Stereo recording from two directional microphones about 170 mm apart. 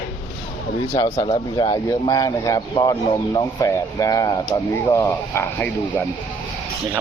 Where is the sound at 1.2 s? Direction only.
25° left (ahead or behind).